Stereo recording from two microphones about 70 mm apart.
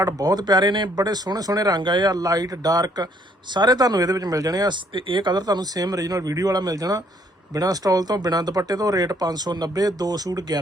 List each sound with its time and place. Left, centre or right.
0.0 s speech: right
3.5 s speech: right
5.2 s speech: right